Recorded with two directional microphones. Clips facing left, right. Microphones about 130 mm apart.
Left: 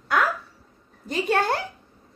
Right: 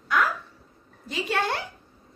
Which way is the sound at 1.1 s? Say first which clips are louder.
Left 4 dB; 45° left (ahead or behind).